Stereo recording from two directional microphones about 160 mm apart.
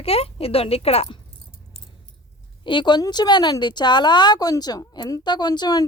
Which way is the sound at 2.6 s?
30° left (ahead or behind).